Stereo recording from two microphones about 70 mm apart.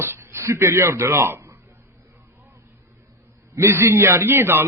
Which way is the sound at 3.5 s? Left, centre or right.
Right.